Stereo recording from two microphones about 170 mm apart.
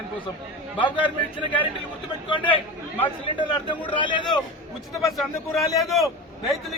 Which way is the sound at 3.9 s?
30° left (ahead or behind).